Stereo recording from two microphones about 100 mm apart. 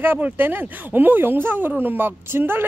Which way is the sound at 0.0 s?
20° right (ahead or behind).